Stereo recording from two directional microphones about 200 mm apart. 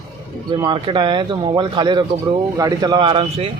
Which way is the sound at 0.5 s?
25° right (ahead or behind).